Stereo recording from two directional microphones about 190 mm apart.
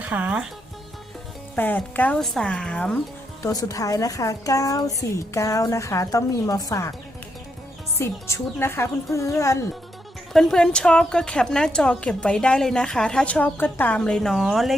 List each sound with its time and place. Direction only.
0.0 s speech: 5° right (ahead or behind)
1.5 s a woman's voice: 10° left (ahead or behind)
3.4 s speech: 20° left (ahead or behind)
7.9 s speech: 15° left (ahead or behind)
10.3 s a woman's voice: centre (ahead or behind)